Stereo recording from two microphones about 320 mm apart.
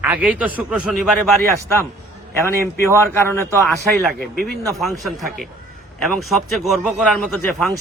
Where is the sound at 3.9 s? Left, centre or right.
Right.